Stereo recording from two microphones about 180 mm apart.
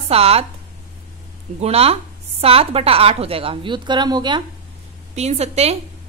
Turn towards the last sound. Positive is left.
turn(degrees=-35)  # may be behind; listen again after turning